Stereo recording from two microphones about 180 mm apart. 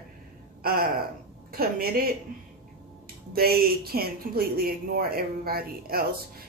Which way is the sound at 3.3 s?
55° right (ahead or behind).